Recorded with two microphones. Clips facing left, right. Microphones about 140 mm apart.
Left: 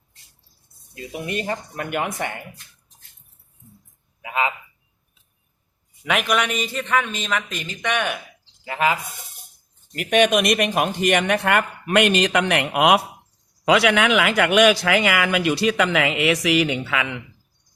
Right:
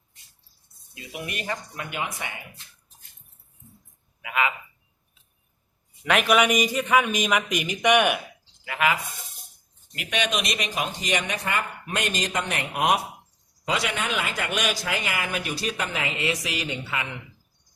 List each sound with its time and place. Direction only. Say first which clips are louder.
0.9 s speech: left 7 dB; 30° left (ahead or behind)
1.7 s speech: left 6 dB; 50° left (ahead or behind)
4.2 s a man's voice: left 2 dB; 30° left (ahead or behind)
6.1 s a man's voice: right 2 dB; centre (ahead or behind)
8.6 s speech: left 3 dB; 30° left (ahead or behind)
9.9 s speech: left 10 dB; 45° left (ahead or behind); by 17.2 s 90° left